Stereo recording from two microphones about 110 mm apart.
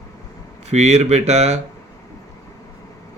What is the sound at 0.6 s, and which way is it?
Speech, 90° right.